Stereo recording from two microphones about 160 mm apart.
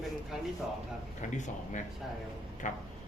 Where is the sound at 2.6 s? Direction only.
55° left (ahead or behind).